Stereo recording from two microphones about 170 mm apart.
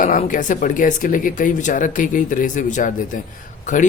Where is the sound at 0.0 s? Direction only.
50° left (ahead or behind).